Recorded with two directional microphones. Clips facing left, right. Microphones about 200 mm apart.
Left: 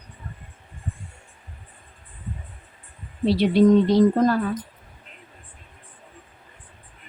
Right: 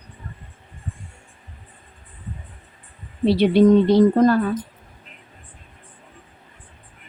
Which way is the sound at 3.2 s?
60° right (ahead or behind).